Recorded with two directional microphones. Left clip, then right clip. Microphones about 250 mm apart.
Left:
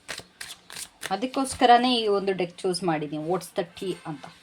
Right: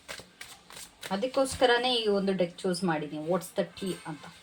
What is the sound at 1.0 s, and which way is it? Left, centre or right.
Speech, left.